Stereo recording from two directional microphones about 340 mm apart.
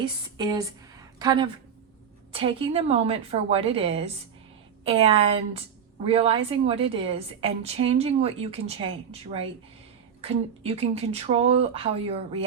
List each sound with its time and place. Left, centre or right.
0.0 s a woman's voice: centre
10.2 s a woman's voice: centre